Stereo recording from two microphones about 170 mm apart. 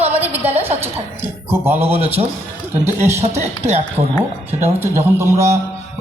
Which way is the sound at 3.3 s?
40° right (ahead or behind).